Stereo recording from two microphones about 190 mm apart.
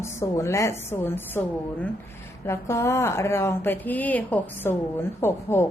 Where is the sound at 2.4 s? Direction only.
15° left (ahead or behind).